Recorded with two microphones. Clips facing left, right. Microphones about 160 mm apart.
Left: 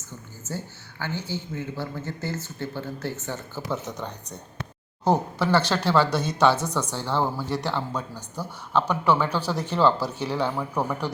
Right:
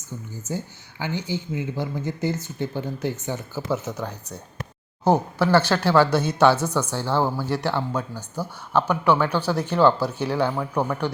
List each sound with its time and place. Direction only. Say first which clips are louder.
0.4 s a woman's voice: right 3 dB; 15° right (ahead or behind); by 11.1 s centre (ahead or behind)